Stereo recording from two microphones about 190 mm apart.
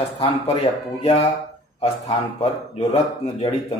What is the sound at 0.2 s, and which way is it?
Speech, 35° left (ahead or behind).